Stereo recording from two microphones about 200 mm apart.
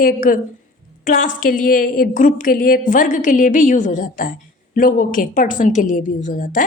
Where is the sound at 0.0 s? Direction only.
45° left (ahead or behind).